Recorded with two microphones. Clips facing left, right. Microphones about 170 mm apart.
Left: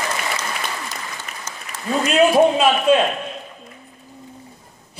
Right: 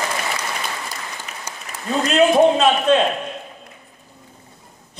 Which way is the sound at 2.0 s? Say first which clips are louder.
Even; 10° left (ahead or behind).